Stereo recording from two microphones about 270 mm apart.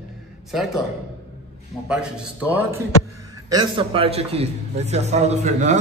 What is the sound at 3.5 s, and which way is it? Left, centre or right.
A man's voice, centre.